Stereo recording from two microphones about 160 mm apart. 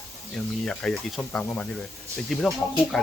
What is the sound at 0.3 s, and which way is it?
Speech, 5° left (ahead or behind).